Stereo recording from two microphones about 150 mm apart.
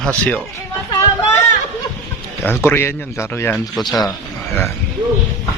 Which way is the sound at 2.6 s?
15° left (ahead or behind).